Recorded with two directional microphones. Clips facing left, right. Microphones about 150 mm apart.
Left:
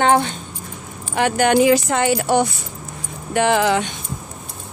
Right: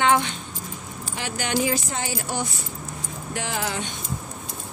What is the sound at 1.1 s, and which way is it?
Speech, 60° left (ahead or behind).